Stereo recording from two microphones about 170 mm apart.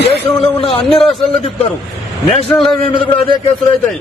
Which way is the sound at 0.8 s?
5° left (ahead or behind).